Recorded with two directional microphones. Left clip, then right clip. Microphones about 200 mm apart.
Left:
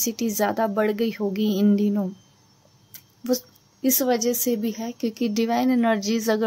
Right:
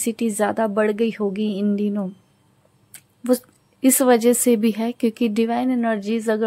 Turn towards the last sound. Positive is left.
turn(degrees=-5)  # may be behind; listen again after turning